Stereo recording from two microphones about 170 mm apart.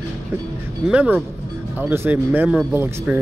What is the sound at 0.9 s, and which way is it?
Speech, 5° right (ahead or behind).